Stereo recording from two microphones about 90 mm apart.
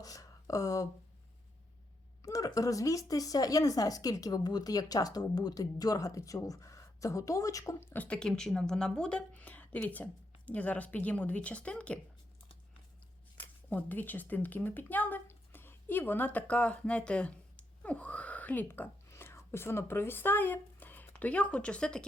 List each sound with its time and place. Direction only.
0.0 s a sound: 40° left (ahead or behind)
2.2 s speech: 40° left (ahead or behind)
8.0 s a woman's voice: 10° left (ahead or behind)
13.7 s speech: 20° left (ahead or behind)